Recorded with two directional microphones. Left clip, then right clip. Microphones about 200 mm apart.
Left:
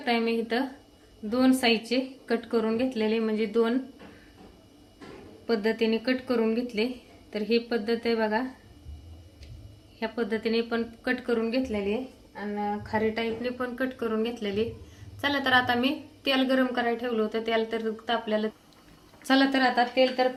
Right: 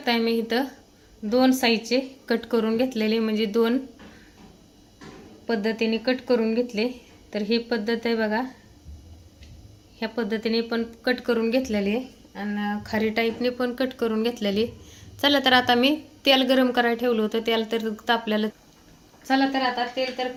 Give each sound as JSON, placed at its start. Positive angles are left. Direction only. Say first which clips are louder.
{"t": 0.0, "sound": "a woman's voice", "louder": "right 3 dB", "side_deg": -30}
{"t": 5.5, "sound": "speech", "louder": "right 1 dB", "side_deg": -20}
{"t": 10.0, "sound": "speech", "louder": "right 2 dB", "side_deg": -30}
{"t": 19.2, "sound": "a woman's voice", "louder": "right 1 dB", "side_deg": 30}